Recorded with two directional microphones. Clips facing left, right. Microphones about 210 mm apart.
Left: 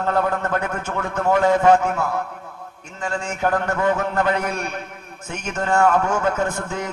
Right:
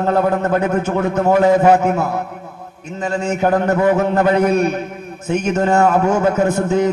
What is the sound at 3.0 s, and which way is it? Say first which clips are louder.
A man's voice: right 6 dB; 20° right (ahead or behind).